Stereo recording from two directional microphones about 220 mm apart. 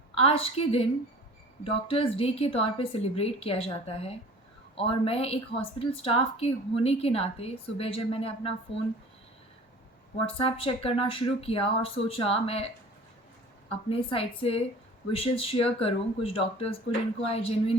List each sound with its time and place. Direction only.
0.1 s a woman's voice: 25° left (ahead or behind)
10.2 s a woman's voice: 25° left (ahead or behind)
13.9 s a woman's voice: 25° left (ahead or behind)